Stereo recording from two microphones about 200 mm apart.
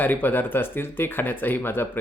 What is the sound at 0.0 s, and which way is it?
Speech, 10° left (ahead or behind).